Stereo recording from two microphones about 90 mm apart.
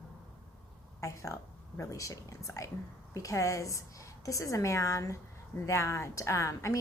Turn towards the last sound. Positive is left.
turn(degrees=35)  # may be behind; listen again after turning